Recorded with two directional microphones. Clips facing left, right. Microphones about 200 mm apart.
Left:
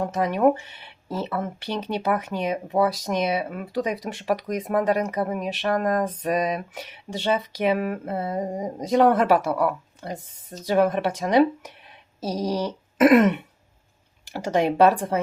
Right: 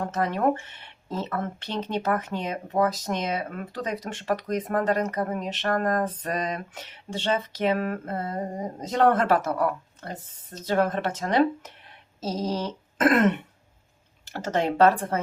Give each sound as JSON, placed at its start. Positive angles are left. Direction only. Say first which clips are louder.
{"t": 0.0, "sound": "speech", "louder": "left 4 dB", "side_deg": 10}